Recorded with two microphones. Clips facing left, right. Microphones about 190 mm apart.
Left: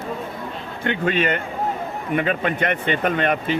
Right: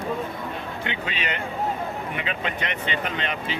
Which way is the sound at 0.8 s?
50° left (ahead or behind).